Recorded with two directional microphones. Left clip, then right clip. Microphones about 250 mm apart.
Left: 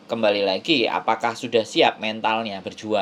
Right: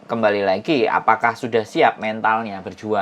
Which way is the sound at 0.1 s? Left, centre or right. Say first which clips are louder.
Right 2 dB; centre.